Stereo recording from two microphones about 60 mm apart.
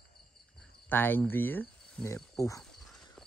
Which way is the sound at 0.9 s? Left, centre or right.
Left.